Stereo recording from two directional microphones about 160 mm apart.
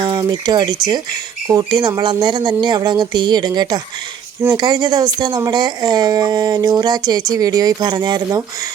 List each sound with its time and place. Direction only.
0.0 s speech: 25° right (ahead or behind)